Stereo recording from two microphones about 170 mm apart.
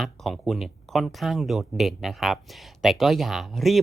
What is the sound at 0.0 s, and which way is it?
Speech, centre (ahead or behind).